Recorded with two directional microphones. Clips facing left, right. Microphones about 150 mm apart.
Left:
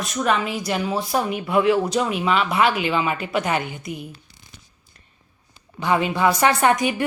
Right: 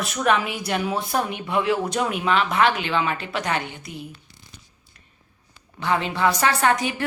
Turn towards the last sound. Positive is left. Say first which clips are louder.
# left 3 dB
turn(degrees=15)  # may be behind; listen again after turning